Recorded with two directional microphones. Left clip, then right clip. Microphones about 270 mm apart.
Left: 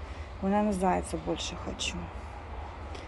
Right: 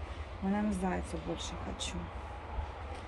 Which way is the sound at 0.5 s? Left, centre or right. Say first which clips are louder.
Left 8 dB; centre.